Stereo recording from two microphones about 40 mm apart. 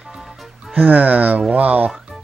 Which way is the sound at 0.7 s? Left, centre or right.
Right.